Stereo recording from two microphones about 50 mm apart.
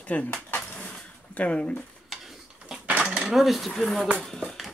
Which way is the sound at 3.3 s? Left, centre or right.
Centre.